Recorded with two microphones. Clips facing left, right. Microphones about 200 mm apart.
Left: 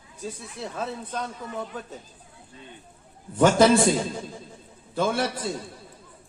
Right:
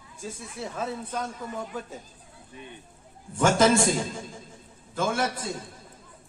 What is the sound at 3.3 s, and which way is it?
Speech, 45° right (ahead or behind).